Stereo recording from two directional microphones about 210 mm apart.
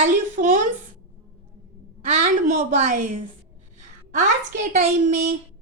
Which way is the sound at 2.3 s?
35° right (ahead or behind).